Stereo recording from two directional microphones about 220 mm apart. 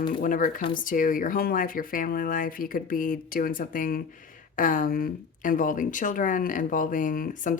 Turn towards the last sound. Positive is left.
turn(degrees=35)  # may be behind; listen again after turning